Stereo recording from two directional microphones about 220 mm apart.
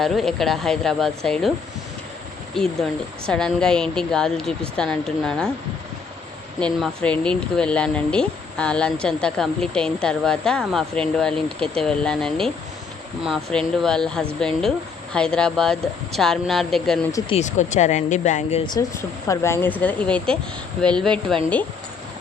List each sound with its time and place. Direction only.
0.0 s speech: centre (ahead or behind)
3.2 s speech: 5° left (ahead or behind)
6.6 s speech: 5° left (ahead or behind)
17.1 s speech: 15° left (ahead or behind)
17.3 s speech: 30° left (ahead or behind)
18.6 s speech: 20° left (ahead or behind); by 21.3 s 5° left (ahead or behind)